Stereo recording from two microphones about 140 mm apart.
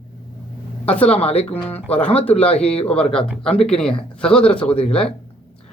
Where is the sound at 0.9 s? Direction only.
10° left (ahead or behind).